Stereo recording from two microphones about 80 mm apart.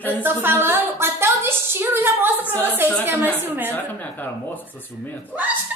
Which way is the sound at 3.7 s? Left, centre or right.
Left.